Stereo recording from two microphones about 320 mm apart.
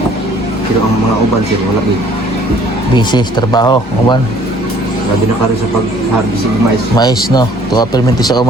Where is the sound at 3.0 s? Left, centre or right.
Centre.